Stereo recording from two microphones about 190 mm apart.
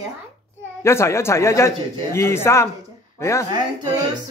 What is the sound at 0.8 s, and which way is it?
A man's voice, 15° left (ahead or behind).